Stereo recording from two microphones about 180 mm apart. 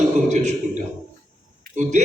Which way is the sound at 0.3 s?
40° right (ahead or behind).